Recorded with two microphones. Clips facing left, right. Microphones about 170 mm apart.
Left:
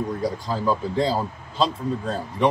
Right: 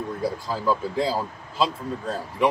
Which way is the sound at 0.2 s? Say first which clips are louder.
Left 2 dB; 20° left (ahead or behind).